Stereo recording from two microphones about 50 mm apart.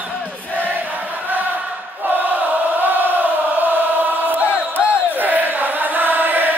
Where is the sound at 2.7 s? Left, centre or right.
Right.